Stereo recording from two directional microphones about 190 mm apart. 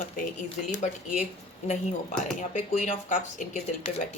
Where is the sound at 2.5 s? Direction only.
40° left (ahead or behind).